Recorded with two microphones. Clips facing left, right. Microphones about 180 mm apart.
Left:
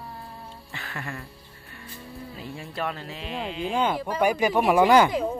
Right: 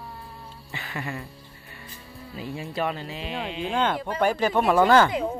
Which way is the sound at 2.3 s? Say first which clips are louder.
Right 6 dB; centre (ahead or behind).